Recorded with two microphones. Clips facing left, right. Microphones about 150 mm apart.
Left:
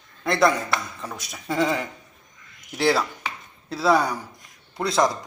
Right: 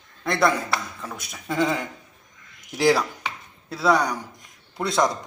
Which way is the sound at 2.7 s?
15° right (ahead or behind).